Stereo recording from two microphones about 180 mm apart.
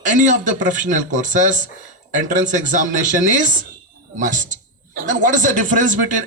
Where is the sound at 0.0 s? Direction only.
45° right (ahead or behind).